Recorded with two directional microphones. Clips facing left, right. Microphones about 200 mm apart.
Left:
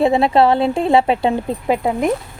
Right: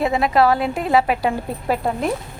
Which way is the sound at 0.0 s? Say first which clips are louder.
Left 4 dB; 30° left (ahead or behind).